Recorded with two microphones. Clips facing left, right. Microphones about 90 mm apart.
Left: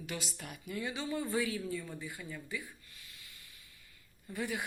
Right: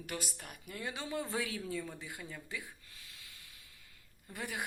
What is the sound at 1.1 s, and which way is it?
Speech, 20° right (ahead or behind).